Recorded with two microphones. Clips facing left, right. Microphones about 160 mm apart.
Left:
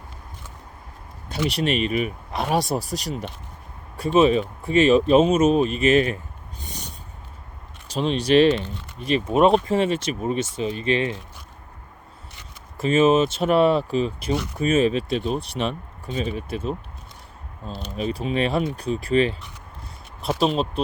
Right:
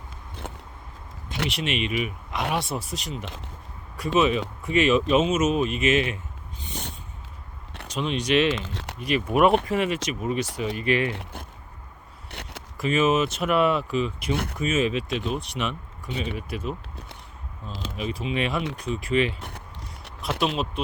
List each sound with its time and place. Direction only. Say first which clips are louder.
0.4 s a sound: right 6 dB; 60° right (ahead or behind)
1.5 s speech: left 6 dB; 35° left (ahead or behind)
7.9 s speech: left 5 dB; 35° left (ahead or behind)
8.7 s speech: right 2 dB; 80° right
9.0 s speech: left 2 dB; 30° left (ahead or behind)
12.3 s a sound: right 7 dB; 70° right (ahead or behind)
12.7 s speech: left 4 dB; 30° left (ahead or behind)
17.9 s speech: left 4 dB; 35° left (ahead or behind)
19.4 s a sound: right 4 dB; 60° right (ahead or behind)
20.4 s speech: left 4 dB; 35° left (ahead or behind)